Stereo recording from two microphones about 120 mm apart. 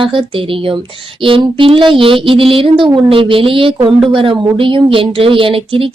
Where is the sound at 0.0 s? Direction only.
45° right (ahead or behind).